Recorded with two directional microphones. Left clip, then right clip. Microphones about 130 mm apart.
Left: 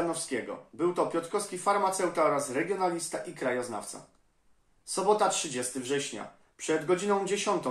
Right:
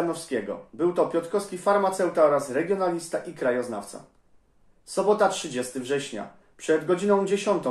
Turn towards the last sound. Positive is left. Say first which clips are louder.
# right 5 dB
turn(degrees=15)  # may be behind; listen again after turning